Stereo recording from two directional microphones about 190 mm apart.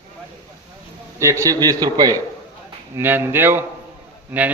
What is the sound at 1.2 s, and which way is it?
A man's voice, 15° right (ahead or behind).